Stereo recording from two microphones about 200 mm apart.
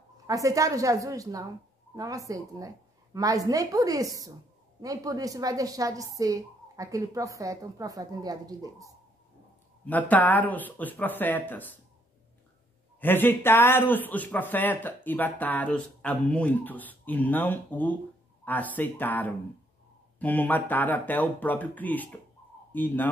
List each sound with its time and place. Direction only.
0.3 s a woman's voice: 15° right (ahead or behind)
9.8 s a man's voice: 10° left (ahead or behind)
13.0 s a man's voice: 10° left (ahead or behind)